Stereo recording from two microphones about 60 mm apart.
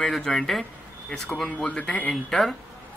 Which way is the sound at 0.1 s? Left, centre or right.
Centre.